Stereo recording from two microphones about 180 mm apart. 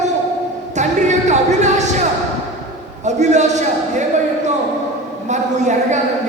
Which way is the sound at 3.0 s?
40° right (ahead or behind).